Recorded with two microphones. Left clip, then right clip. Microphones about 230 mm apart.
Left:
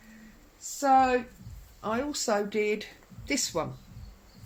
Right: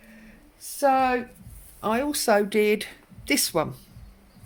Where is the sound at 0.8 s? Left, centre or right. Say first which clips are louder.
Right 1 dB; right.